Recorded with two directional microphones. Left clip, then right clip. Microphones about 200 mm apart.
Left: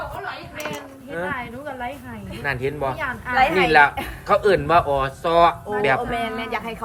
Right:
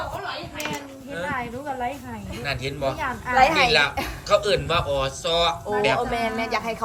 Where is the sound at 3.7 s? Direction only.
35° left (ahead or behind).